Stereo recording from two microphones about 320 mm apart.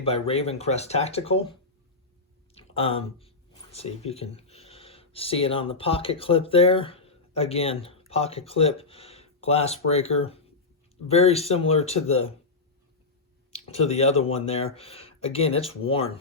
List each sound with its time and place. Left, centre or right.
0.0 s speech: centre
2.6 s speech: centre
13.5 s speech: centre